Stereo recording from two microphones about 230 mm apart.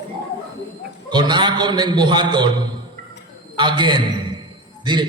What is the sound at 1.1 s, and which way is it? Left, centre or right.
A man's voice, centre.